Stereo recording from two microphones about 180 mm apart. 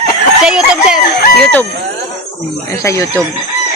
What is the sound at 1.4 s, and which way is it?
Speech, 10° left (ahead or behind).